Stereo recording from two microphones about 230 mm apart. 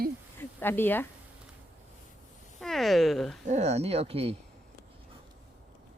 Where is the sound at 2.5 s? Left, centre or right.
Centre.